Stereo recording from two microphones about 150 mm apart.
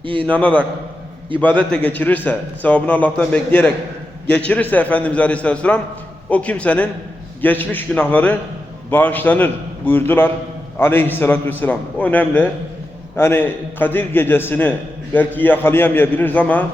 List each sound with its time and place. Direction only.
0.0 s a man's voice: 35° right (ahead or behind)
0.3 s a man's voice: 10° left (ahead or behind)